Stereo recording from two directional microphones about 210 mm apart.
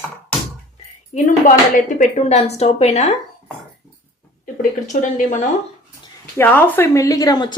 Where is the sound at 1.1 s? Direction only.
40° left (ahead or behind).